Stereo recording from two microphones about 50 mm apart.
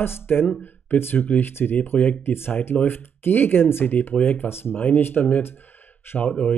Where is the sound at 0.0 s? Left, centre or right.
Left.